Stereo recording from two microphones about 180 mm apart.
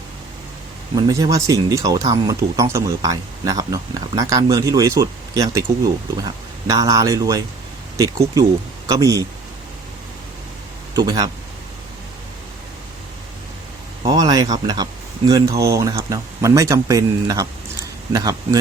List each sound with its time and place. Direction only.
0.9 s speech: 20° right (ahead or behind)
10.9 s speech: 20° right (ahead or behind)
14.0 s speech: 20° right (ahead or behind)